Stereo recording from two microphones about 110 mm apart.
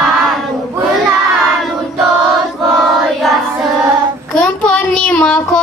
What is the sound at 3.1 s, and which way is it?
Child singing, centre (ahead or behind).